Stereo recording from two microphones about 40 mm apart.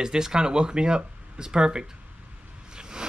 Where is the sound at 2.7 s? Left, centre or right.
Centre.